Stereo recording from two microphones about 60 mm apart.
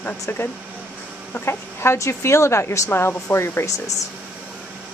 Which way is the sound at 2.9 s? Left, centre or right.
Left.